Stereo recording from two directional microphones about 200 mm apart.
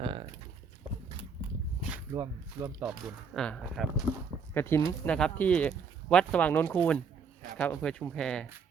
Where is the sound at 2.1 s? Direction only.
15° right (ahead or behind).